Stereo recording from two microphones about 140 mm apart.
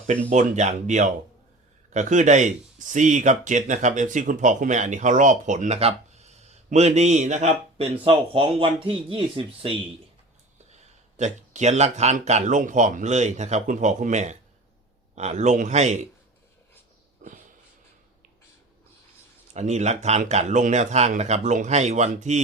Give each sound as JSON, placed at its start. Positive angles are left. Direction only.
{"t": 0.3, "sound": "speech", "side_deg": -55}
{"t": 8.0, "sound": "speech", "side_deg": -40}
{"t": 11.2, "sound": "speech", "side_deg": -60}
{"t": 17.2, "sound": "a sound", "side_deg": -65}
{"t": 19.5, "sound": "speech", "side_deg": -55}